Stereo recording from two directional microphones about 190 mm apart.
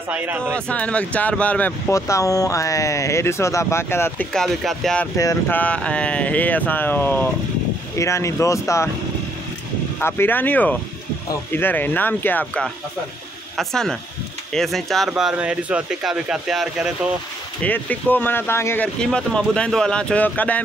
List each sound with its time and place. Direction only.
0.1 s speech: 10° right (ahead or behind)
0.7 s speech: 5° left (ahead or behind)
5.1 s speech: 15° left (ahead or behind)
9.9 s speech: 10° left (ahead or behind)
17.6 s speech: 10° left (ahead or behind)